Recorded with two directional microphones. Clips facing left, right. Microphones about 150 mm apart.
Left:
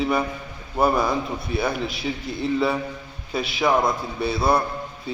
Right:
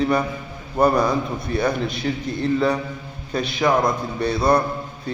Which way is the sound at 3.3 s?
5° left (ahead or behind).